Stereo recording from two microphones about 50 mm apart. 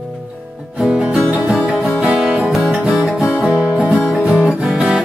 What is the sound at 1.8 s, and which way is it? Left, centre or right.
Music, centre.